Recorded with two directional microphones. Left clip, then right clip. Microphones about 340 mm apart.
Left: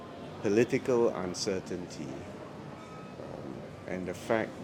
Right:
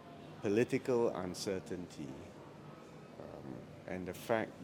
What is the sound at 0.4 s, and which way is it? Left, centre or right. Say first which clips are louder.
Speech: left 6 dB; right.